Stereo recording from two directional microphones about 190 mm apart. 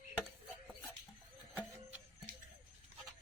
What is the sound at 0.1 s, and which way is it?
Chopping, 5° left (ahead or behind).